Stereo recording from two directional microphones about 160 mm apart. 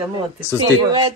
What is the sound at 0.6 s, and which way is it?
Speech, 35° right (ahead or behind).